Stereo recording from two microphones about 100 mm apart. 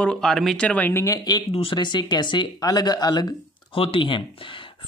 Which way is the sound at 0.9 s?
35° left (ahead or behind).